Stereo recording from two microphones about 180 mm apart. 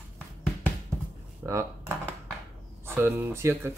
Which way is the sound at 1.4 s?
15° right (ahead or behind).